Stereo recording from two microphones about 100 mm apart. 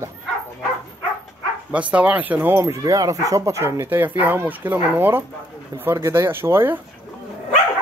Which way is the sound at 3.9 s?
20° right (ahead or behind).